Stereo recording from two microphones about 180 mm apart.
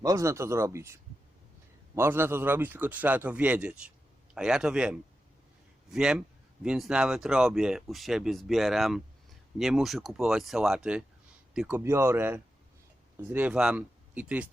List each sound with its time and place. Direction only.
0.0 s a man's voice: 20° right (ahead or behind)
2.0 s a man's voice: 15° right (ahead or behind)
11.8 s a man's voice: 15° right (ahead or behind)